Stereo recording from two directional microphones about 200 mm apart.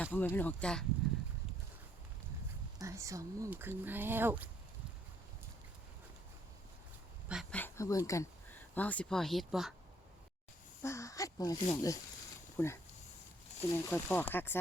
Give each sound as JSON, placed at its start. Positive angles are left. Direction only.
{"t": 0.0, "sound": "speech", "side_deg": 10}
{"t": 2.7, "sound": "speech", "side_deg": -15}
{"t": 7.5, "sound": "speech", "side_deg": 10}
{"t": 10.8, "sound": "speech", "side_deg": 15}